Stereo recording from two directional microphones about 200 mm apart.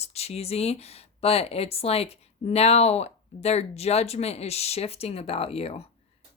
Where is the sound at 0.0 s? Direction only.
30° left (ahead or behind).